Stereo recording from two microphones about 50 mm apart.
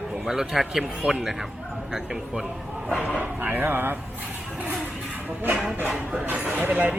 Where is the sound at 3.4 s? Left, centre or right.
Right.